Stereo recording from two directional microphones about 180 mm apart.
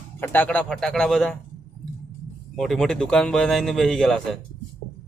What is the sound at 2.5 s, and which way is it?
A man's voice, centre (ahead or behind).